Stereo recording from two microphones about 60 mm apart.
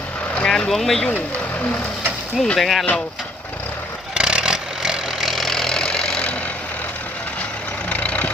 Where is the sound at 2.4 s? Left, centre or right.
Centre.